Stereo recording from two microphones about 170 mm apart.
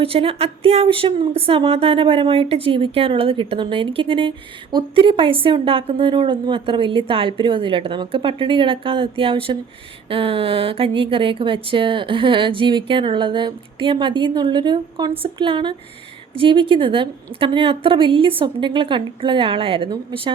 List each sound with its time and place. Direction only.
0.0 s speech: 35° right (ahead or behind)